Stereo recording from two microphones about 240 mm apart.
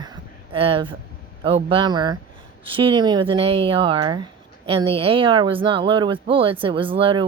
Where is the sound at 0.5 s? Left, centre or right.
Right.